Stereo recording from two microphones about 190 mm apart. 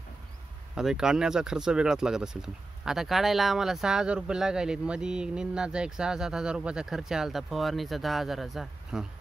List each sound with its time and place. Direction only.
0.7 s speech: 5° right (ahead or behind)